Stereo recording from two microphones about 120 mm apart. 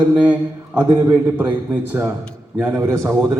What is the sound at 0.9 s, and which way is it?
A man's voice, 15° right (ahead or behind).